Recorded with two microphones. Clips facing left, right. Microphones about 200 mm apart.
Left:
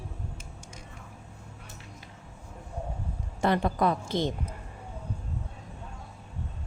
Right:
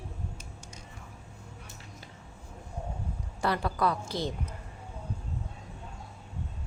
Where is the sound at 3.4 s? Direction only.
20° left (ahead or behind).